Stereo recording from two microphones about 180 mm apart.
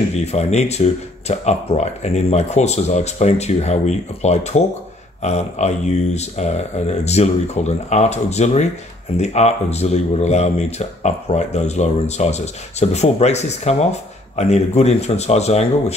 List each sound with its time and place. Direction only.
0.1 s speech: 35° left (ahead or behind)